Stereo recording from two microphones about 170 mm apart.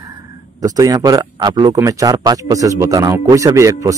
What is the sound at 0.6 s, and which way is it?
Speech, 20° right (ahead or behind).